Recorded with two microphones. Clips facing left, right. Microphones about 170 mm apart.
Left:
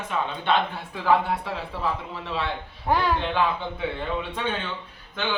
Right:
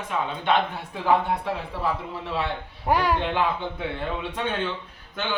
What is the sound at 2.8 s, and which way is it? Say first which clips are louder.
Speech: right 1 dB; 10° right (ahead or behind).